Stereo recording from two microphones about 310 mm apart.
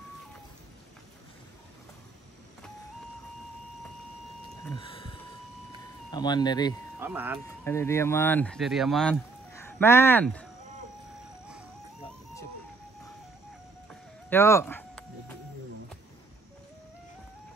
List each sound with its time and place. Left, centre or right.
4.7 s a sound: centre
6.1 s speech: centre
7.0 s speech: centre
7.4 s speech: centre
14.3 s music: centre